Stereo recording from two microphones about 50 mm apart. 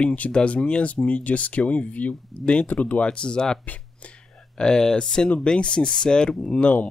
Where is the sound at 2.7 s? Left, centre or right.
Left.